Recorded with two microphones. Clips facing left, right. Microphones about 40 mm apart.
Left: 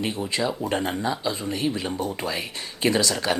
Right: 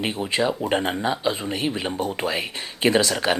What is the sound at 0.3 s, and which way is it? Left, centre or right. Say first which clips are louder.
Speech: right 4 dB; right.